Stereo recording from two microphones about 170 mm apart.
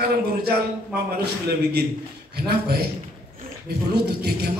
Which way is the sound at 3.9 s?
70° right (ahead or behind).